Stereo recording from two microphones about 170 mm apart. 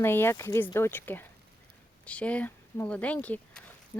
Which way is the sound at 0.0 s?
15° left (ahead or behind).